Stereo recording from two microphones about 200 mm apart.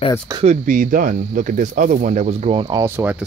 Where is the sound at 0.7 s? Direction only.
40° right (ahead or behind).